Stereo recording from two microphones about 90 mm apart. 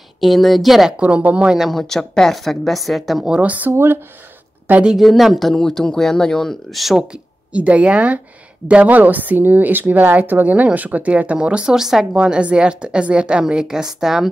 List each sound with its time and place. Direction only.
0.2 s speech: centre (ahead or behind)
0.9 s speech: 15° right (ahead or behind)
1.7 s speech: 5° left (ahead or behind)
3.3 s speech: 15° right (ahead or behind)
3.7 s speech: 25° right (ahead or behind)
4.6 s speech: 15° right (ahead or behind)
4.9 s speech: centre (ahead or behind)
7.0 s speech: 15° right (ahead or behind)